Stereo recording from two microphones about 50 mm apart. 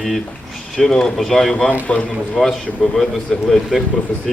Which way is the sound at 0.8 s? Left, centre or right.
Centre.